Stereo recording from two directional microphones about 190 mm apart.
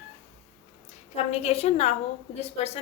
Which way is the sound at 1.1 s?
35° left (ahead or behind).